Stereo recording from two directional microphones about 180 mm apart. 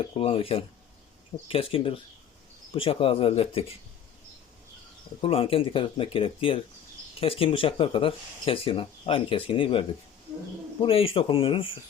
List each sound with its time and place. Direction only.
0.0 s speech: 30° left (ahead or behind)
5.2 s speech: 30° left (ahead or behind)